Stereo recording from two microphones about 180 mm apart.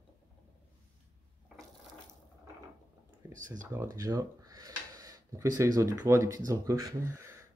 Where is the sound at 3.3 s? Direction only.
45° right (ahead or behind).